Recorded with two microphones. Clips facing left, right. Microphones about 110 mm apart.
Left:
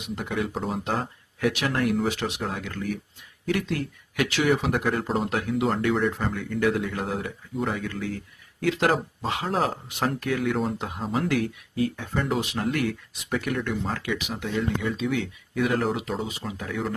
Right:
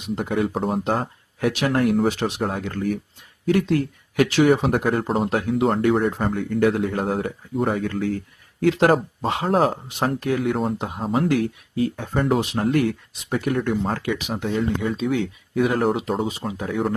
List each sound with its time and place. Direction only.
0.3 s speech: 40° right (ahead or behind); by 11.0 s 25° right (ahead or behind)
11.1 s speech: 40° right (ahead or behind)
13.8 s speech: 40° right (ahead or behind)